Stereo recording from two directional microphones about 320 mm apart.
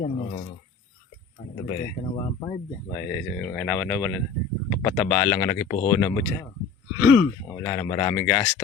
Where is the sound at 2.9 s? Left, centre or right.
Centre.